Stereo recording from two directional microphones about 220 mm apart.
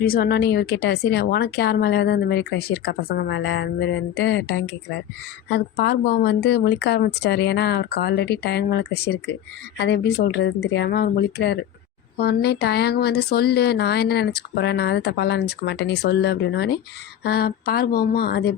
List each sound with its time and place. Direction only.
0.0 s speech: 40° left (ahead or behind)